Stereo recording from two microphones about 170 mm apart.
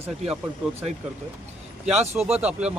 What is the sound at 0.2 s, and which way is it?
Speech, 40° right (ahead or behind).